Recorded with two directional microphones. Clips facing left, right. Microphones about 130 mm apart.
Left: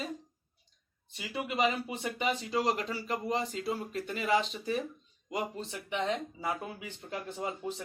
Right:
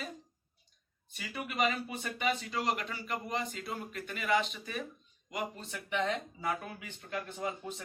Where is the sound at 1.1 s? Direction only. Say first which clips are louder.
Left 4 dB; 20° left (ahead or behind).